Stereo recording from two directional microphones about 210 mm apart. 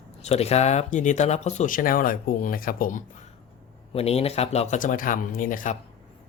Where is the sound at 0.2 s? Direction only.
30° left (ahead or behind).